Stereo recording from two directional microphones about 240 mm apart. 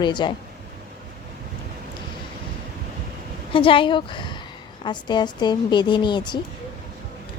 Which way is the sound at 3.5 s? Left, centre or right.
Left.